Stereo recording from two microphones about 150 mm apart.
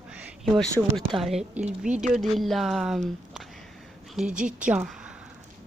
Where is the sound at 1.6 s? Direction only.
50° right (ahead or behind).